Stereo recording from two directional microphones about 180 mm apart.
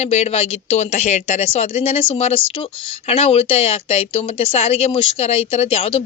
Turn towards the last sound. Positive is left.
turn(degrees=30)  # may be behind; listen again after turning